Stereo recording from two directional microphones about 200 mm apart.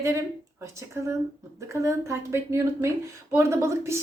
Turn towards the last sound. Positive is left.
turn(degrees=-15)  # may be behind; listen again after turning